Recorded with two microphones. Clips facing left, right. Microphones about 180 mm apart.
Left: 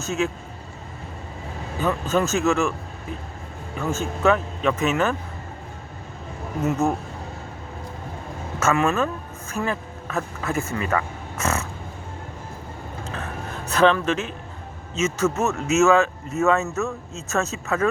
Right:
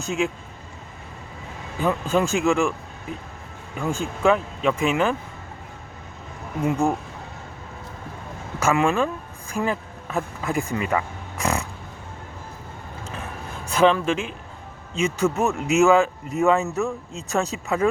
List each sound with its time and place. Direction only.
0.0 s speech: 15° right (ahead or behind)
1.8 s speech: 10° right (ahead or behind)
3.8 s speech: 15° right (ahead or behind)
6.6 s speech: 10° right (ahead or behind)
8.5 s speech: 15° right (ahead or behind)
13.7 s speech: 10° right (ahead or behind)